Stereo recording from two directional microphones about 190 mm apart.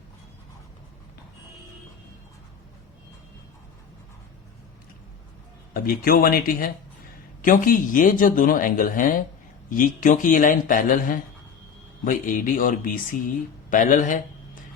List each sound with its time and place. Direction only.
5.7 s speech: 50° left (ahead or behind)